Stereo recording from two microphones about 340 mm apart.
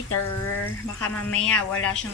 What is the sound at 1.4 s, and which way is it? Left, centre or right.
Speech, centre.